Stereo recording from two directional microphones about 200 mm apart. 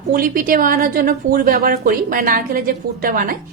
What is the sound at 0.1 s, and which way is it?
A woman's voice, 45° right (ahead or behind).